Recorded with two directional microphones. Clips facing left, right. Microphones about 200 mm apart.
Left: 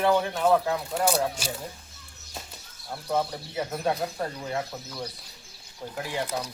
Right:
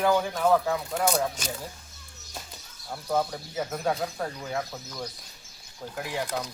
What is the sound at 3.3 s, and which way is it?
Speech, 5° left (ahead or behind).